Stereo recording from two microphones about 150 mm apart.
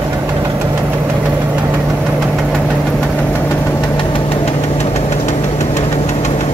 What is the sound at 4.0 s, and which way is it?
Engine knocking, 35° left (ahead or behind).